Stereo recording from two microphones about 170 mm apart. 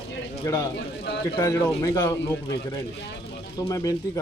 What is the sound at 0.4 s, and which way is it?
Speech, 20° left (ahead or behind).